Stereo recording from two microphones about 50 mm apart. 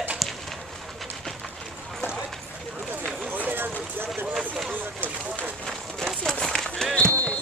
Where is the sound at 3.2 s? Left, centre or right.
Right.